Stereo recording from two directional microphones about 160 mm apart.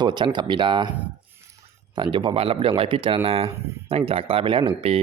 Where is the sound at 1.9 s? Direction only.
30° right (ahead or behind).